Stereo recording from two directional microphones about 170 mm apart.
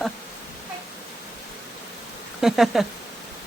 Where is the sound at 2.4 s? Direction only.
Centre (ahead or behind).